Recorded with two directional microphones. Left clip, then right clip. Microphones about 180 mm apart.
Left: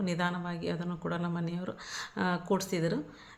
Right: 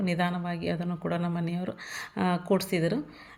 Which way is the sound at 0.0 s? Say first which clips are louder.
Right 3 dB; 10° right (ahead or behind).